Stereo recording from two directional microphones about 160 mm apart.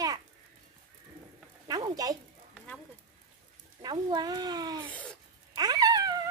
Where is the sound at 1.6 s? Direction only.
25° right (ahead or behind).